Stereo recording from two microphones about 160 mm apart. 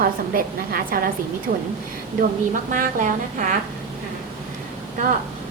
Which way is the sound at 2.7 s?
55° right (ahead or behind).